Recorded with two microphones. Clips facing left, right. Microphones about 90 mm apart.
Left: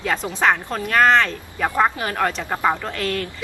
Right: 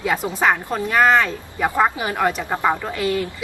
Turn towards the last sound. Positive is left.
turn(degrees=-10)  # may be behind; listen again after turning